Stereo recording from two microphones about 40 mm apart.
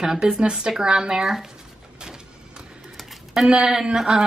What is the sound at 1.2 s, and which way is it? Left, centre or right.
Speech, centre.